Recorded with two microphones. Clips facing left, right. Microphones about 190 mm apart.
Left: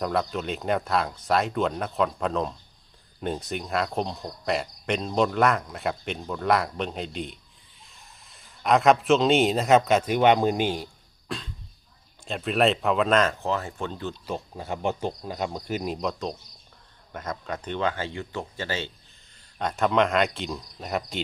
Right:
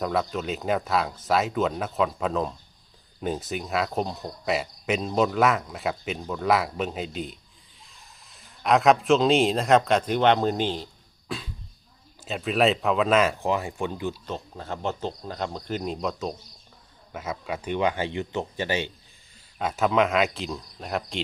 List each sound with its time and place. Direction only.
0.0 s speech: centre (ahead or behind)
11.3 s a sound: centre (ahead or behind)
12.2 s speech: centre (ahead or behind)
14.3 s speech: 10° left (ahead or behind); by 18.9 s 15° right (ahead or behind)
19.5 s speech: 5° right (ahead or behind)